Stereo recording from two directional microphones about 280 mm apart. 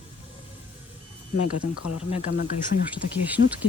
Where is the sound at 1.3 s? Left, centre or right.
Left.